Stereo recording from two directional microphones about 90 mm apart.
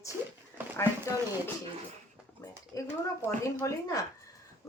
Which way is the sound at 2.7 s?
35° left (ahead or behind).